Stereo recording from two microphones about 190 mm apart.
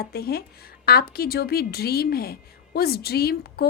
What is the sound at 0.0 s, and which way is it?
A woman's voice, 55° left (ahead or behind).